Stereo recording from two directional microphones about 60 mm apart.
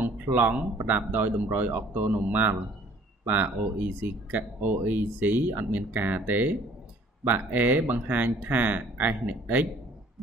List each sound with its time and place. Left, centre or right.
0.0 s speech: right